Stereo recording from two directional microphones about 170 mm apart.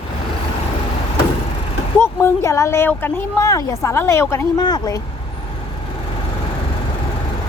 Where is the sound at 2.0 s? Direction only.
15° left (ahead or behind).